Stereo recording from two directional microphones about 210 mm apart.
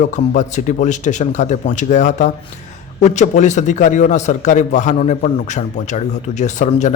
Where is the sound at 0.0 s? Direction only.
35° left (ahead or behind).